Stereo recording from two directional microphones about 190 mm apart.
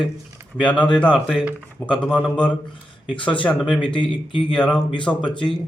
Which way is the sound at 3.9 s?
25° left (ahead or behind).